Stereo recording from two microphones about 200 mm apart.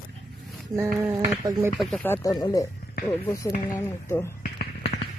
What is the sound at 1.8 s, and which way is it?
Speech, centre (ahead or behind).